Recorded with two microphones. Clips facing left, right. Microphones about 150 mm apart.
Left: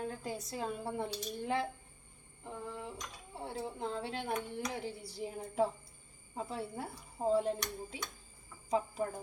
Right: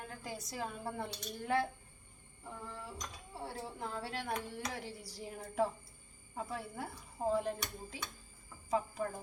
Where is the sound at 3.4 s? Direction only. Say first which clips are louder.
Left 4 dB; 20° left (ahead or behind).